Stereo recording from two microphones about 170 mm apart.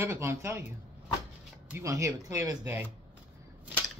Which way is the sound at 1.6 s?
15° right (ahead or behind).